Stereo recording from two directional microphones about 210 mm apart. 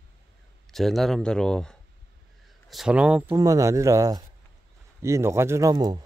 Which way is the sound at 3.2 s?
15° right (ahead or behind).